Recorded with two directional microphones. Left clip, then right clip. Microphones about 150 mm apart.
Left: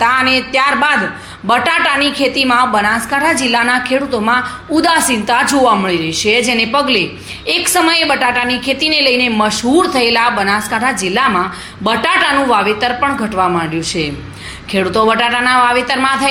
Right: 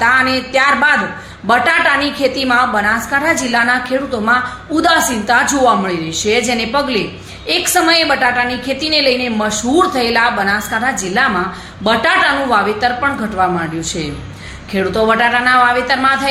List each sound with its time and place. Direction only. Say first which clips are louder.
0.0 s a woman's voice: left 1 dB; 15° left (ahead or behind)